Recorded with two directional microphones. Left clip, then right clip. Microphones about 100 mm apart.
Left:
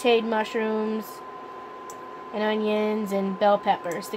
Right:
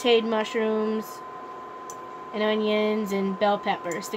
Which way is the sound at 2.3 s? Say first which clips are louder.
Right 1 dB; 70° left (ahead or behind).